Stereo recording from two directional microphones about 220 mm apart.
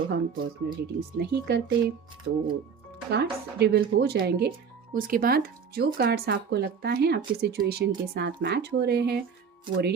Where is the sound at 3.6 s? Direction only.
45° right (ahead or behind).